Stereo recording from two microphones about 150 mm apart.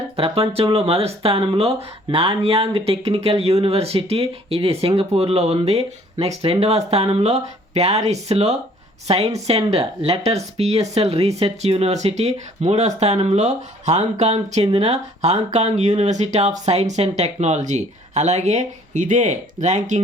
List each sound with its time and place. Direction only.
0.2 s speech: 40° right (ahead or behind)